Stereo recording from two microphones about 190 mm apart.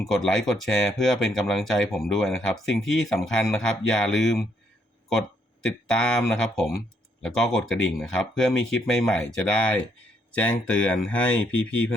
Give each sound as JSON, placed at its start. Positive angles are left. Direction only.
{"t": 0.1, "sound": "speech", "side_deg": 0}
{"t": 5.6, "sound": "speech", "side_deg": 5}